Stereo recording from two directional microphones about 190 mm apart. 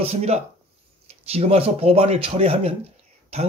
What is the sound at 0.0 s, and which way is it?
Speech, 35° right (ahead or behind).